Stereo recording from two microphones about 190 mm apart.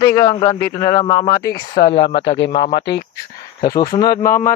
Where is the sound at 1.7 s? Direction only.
60° left (ahead or behind).